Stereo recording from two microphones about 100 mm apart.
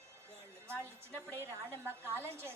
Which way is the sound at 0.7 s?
25° right (ahead or behind).